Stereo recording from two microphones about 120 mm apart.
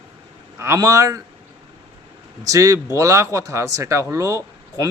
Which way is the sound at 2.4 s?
25° right (ahead or behind).